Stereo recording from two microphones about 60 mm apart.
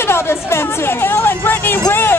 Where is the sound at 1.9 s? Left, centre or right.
Left.